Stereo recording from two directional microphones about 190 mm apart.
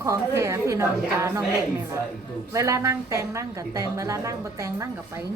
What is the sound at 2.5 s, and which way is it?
A woman's voice, 15° right (ahead or behind).